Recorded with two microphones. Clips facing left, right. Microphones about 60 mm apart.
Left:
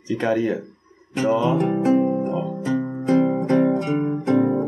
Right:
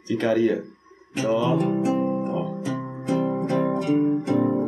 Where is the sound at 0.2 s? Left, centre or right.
Centre.